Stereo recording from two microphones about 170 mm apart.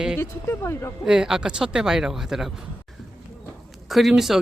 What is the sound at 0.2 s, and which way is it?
Speech, 15° left (ahead or behind).